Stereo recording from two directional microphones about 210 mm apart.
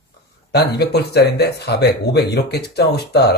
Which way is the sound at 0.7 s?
50° left (ahead or behind).